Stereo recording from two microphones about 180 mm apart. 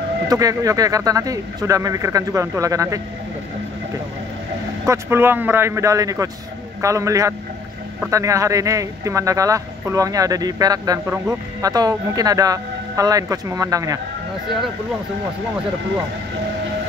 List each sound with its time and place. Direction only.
0.3 s speech: 20° right (ahead or behind)
4.8 s a man's voice: 15° right (ahead or behind)